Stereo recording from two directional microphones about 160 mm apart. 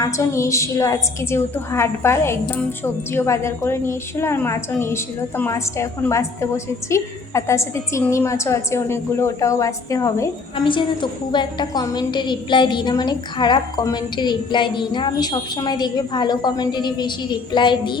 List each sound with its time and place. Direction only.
0.0 s a woman's voice: 20° left (ahead or behind)